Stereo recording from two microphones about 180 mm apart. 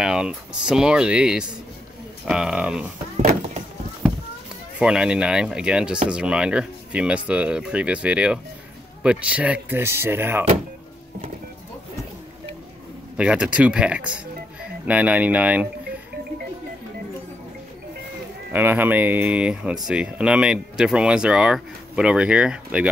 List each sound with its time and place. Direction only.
0.0 s speech: 5° right (ahead or behind)
3.2 s a sound: 40° right (ahead or behind)
4.7 s speech: 5° right (ahead or behind)
13.2 s speech: 5° right (ahead or behind)
18.5 s speech: 10° right (ahead or behind)